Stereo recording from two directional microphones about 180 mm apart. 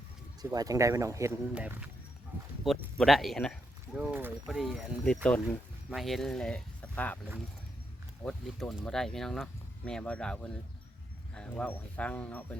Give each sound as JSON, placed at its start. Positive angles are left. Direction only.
{"t": 0.5, "sound": "speech", "side_deg": -20}
{"t": 8.2, "sound": "speech", "side_deg": 5}